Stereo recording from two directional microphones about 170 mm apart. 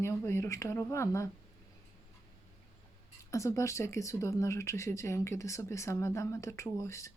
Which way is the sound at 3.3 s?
20° left (ahead or behind).